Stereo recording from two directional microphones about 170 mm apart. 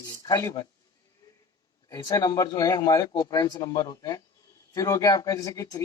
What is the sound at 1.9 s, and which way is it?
Speech, 20° left (ahead or behind).